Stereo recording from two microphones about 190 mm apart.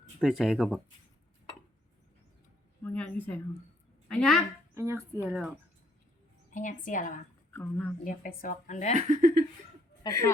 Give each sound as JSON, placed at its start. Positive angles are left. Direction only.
{"t": 0.2, "sound": "speech", "side_deg": 0}
{"t": 2.8, "sound": "a woman's voice", "side_deg": 5}
{"t": 4.7, "sound": "speech", "side_deg": -15}
{"t": 6.5, "sound": "a woman's voice", "side_deg": 45}
{"t": 7.5, "sound": "a woman's voice", "side_deg": 10}
{"t": 8.0, "sound": "a woman's voice", "side_deg": 45}
{"t": 9.0, "sound": "speech", "side_deg": -40}
{"t": 10.0, "sound": "a woman's voice", "side_deg": 15}